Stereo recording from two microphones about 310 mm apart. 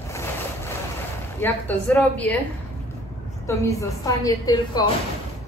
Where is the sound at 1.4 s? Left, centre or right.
Centre.